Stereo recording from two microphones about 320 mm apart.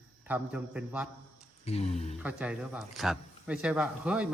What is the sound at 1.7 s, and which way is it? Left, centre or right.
Speech, centre.